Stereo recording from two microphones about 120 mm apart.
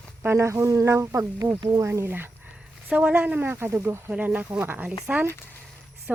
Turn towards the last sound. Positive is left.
turn(degrees=-10)  # may be behind; listen again after turning